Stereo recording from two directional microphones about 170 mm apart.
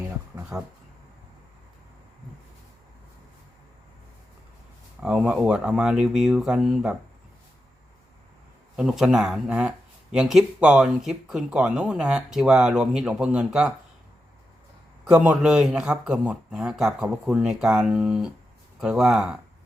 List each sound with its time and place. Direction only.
0.5 s speech: 20° right (ahead or behind)
5.0 s speech: 5° right (ahead or behind)
8.7 s speech: 5° right (ahead or behind)
15.1 s speech: 10° right (ahead or behind)